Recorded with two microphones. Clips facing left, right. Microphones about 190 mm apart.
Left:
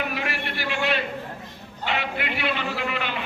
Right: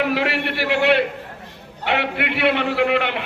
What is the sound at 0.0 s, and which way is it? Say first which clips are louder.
A man's voice: right 8 dB; 70° right (ahead or behind).